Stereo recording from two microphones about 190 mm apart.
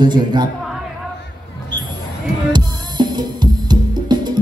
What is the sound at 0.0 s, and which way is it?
Speech, 20° right (ahead or behind).